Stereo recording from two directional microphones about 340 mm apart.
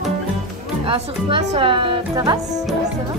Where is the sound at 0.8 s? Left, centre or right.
Centre.